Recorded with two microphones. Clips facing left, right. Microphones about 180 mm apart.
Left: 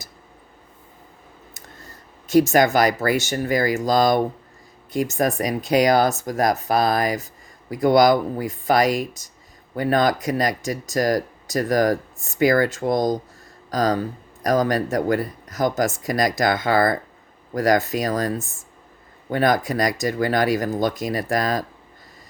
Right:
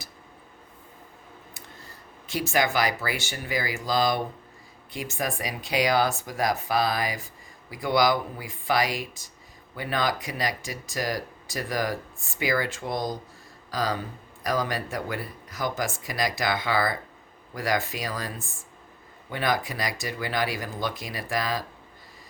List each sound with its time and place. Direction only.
2.2 s speech: 45° left (ahead or behind)